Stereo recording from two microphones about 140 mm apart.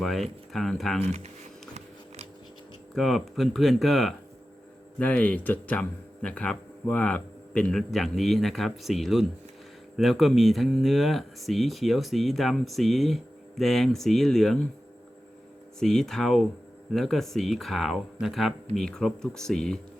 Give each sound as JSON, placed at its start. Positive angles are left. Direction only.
{"t": 0.0, "sound": "speech", "side_deg": 0}
{"t": 1.0, "sound": "speech", "side_deg": -50}
{"t": 2.9, "sound": "speech", "side_deg": 0}
{"t": 15.8, "sound": "speech", "side_deg": 5}